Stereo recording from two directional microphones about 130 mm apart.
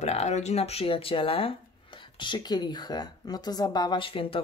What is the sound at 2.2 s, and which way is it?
Speech, 35° left (ahead or behind).